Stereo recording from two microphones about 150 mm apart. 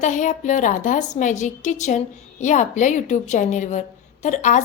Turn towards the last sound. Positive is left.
turn(degrees=55)  # may be behind; listen again after turning